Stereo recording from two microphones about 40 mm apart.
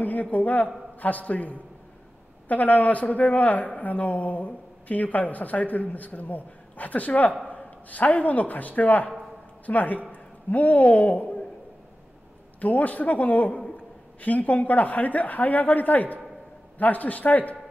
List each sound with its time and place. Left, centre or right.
0.0 s a man's voice: left
12.5 s a man's voice: left